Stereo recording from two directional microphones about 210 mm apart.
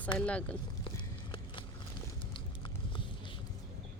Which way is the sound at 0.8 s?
25° left (ahead or behind).